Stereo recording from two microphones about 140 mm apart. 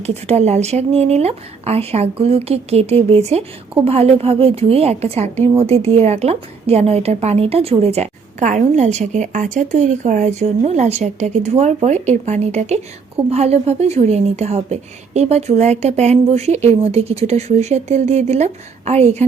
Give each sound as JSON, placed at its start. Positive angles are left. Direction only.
{"t": 0.0, "sound": "speech", "side_deg": -50}